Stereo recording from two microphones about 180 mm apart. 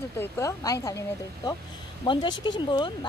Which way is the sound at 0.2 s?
15° left (ahead or behind).